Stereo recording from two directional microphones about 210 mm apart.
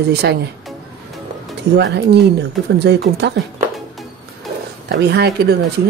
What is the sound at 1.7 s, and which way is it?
Speech, 55° right (ahead or behind).